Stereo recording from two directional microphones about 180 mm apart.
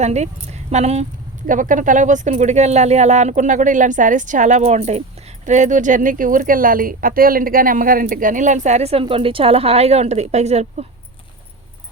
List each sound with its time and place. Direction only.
0.0 s a woman's voice: 40° right (ahead or behind)